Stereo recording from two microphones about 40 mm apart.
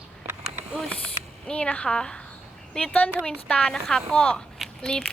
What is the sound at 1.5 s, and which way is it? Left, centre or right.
Speech, left.